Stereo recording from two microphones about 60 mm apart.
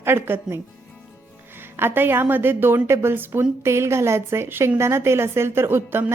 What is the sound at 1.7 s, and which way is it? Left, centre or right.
A woman's voice, right.